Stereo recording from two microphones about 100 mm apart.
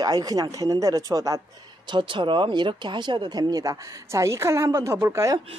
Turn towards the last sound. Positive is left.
turn(degrees=-30)  # may be behind; listen again after turning